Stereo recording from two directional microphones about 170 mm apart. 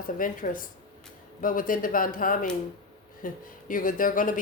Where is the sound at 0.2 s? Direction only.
55° left (ahead or behind).